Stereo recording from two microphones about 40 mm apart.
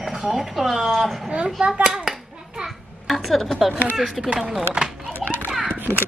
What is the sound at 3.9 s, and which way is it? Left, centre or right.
Speech, centre.